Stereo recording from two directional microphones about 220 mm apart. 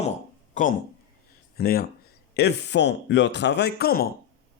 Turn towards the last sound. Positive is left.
turn(degrees=45)  # may be behind; listen again after turning